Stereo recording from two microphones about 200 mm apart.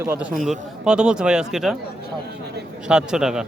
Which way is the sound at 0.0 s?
10° right (ahead or behind).